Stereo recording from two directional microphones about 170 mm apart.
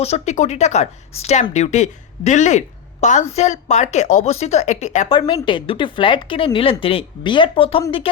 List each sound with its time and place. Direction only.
0.0 s speech: 40° left (ahead or behind)